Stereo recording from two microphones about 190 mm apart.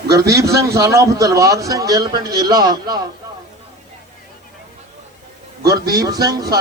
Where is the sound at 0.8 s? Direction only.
15° right (ahead or behind).